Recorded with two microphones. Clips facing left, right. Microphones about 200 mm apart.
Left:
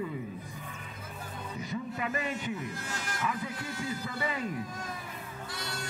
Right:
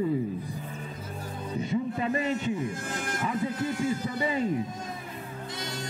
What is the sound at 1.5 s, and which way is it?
Speech, 30° right (ahead or behind).